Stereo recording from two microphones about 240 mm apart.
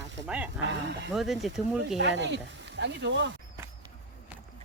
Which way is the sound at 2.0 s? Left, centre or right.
Right.